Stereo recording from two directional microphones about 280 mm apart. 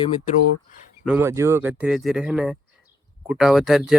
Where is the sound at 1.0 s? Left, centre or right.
Centre.